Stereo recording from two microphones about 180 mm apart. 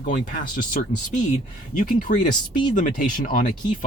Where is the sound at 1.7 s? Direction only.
45° left (ahead or behind).